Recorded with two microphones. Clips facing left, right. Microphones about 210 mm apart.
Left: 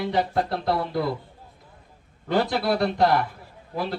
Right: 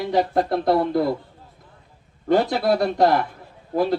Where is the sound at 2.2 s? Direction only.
50° right (ahead or behind).